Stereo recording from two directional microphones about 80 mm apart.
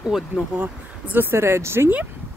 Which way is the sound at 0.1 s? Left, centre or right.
Centre.